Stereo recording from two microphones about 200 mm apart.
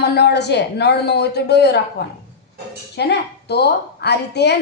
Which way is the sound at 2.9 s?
55° left (ahead or behind).